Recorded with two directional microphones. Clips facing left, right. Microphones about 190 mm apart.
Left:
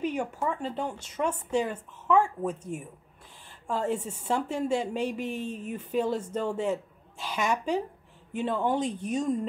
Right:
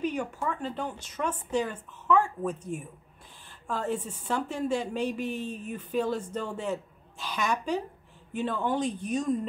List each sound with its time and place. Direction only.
0.0 s a woman's voice: 25° left (ahead or behind)